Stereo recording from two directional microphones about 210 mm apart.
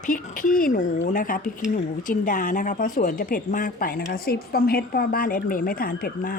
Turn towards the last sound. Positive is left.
turn(degrees=40)  # may be behind; listen again after turning